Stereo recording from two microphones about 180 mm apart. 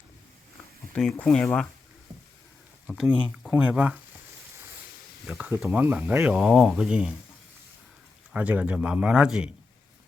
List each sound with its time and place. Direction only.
1.1 s a man's voice: 5° left (ahead or behind)
2.9 s speech: 5° right (ahead or behind)
5.3 s speech: 15° right (ahead or behind)
8.3 s a man's voice: 5° right (ahead or behind)